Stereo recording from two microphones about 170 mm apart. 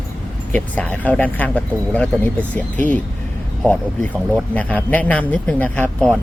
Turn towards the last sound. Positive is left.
turn(degrees=5)  # may be behind; listen again after turning